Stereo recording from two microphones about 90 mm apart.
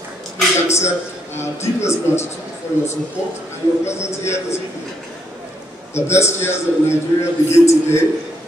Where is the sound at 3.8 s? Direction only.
30° left (ahead or behind).